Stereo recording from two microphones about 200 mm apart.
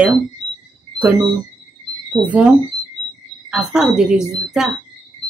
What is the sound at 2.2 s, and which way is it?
Speech, 20° right (ahead or behind).